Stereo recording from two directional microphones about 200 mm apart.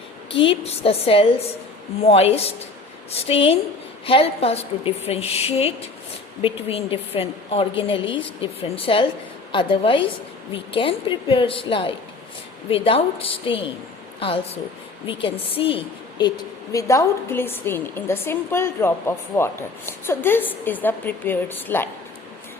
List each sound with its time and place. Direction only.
0.3 s a woman's voice: 25° left (ahead or behind); by 21.8 s 10° left (ahead or behind)